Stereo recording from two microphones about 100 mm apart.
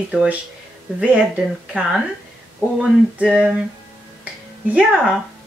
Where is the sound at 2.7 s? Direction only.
10° right (ahead or behind).